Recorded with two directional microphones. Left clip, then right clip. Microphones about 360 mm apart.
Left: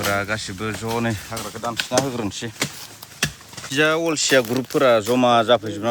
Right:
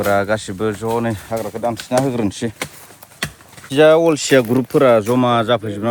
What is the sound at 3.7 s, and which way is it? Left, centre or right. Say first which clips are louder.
Speech: right 8 dB; centre.